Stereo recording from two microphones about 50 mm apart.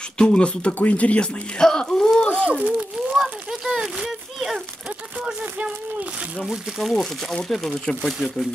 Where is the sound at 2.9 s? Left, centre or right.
Centre.